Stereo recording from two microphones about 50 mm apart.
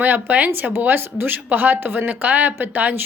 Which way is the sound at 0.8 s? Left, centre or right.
Right.